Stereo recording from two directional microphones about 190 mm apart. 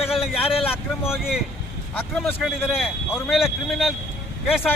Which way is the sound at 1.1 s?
Centre (ahead or behind).